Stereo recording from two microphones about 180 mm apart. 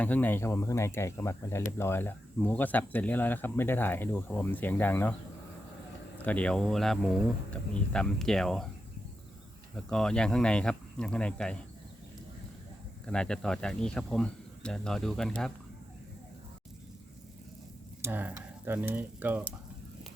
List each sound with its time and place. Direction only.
0.0 s speech: 10° left (ahead or behind)
6.1 s speech: 10° left (ahead or behind)
9.7 s speech: 5° left (ahead or behind)
13.1 s speech: 5° left (ahead or behind)
18.0 s speech: 10° right (ahead or behind)